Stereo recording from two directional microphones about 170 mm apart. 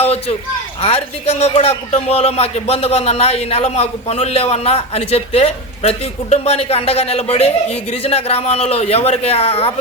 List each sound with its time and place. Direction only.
0.0 s a man's voice: 35° left (ahead or behind)